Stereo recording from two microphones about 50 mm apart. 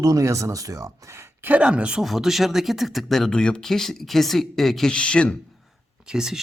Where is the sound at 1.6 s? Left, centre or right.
Right.